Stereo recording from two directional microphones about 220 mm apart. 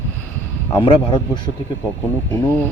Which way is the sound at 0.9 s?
20° left (ahead or behind).